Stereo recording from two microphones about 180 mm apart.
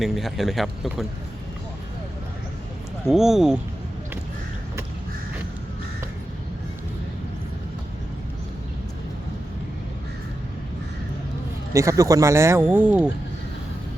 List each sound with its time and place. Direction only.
0.0 s speech: centre (ahead or behind)
3.1 s speech: centre (ahead or behind)
11.7 s speech: 15° right (ahead or behind)